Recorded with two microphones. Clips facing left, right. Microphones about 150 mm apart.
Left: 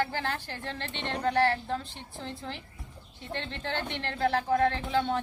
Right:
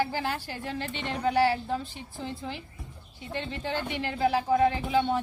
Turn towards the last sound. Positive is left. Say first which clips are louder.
# right 2 dB
turn(degrees=-10)  # may be behind; listen again after turning